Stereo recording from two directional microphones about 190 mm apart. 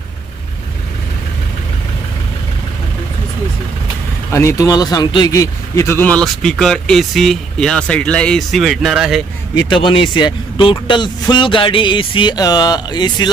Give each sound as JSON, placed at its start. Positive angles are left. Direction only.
{"t": 4.3, "sound": "speech", "side_deg": 15}
{"t": 9.6, "sound": "a man's voice", "side_deg": 25}